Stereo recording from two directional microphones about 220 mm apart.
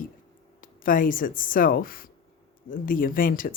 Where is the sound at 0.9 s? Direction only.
40° left (ahead or behind).